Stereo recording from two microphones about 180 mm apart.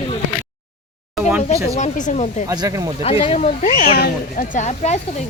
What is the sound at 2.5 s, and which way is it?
Speech, 20° right (ahead or behind).